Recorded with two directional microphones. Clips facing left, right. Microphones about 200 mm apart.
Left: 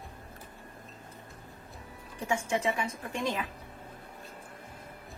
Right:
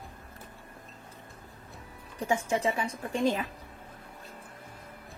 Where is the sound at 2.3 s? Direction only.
35° right (ahead or behind).